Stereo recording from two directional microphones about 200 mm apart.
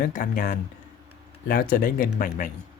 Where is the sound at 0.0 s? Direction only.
40° left (ahead or behind).